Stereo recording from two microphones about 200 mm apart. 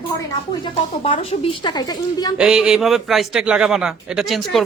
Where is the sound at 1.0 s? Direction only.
30° left (ahead or behind).